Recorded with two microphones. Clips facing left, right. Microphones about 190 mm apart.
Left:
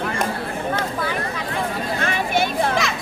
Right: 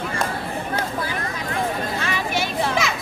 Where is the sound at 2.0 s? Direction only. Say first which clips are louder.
Left 3 dB; 55° left (ahead or behind).